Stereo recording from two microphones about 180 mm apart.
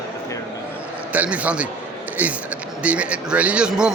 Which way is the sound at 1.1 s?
10° right (ahead or behind).